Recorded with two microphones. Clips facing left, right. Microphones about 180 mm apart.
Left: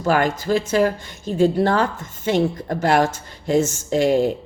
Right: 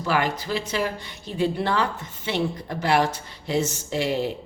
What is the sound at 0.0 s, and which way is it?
A woman's voice, 45° left (ahead or behind).